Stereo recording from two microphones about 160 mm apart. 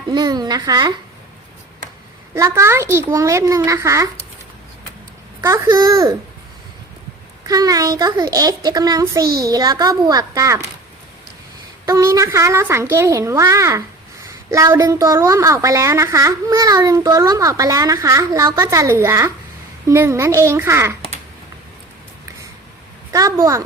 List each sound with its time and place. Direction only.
0.1 s speech: 25° right (ahead or behind)
2.3 s speech: 15° right (ahead or behind)
5.4 s a child's voice: 15° right (ahead or behind)
7.4 s speech: 25° right (ahead or behind)
11.9 s a child's voice: 20° right (ahead or behind)
23.1 s speech: 20° right (ahead or behind)